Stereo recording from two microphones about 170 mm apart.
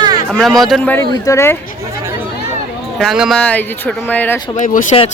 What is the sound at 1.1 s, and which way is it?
Speech, 20° left (ahead or behind).